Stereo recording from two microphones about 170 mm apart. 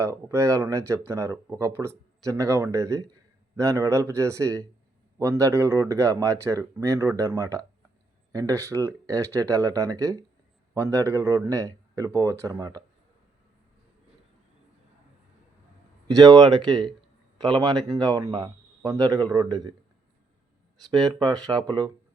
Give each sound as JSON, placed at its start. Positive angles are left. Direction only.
{"t": 0.0, "sound": "speech", "side_deg": -15}
{"t": 16.0, "sound": "speech", "side_deg": -20}
{"t": 21.2, "sound": "speech", "side_deg": -25}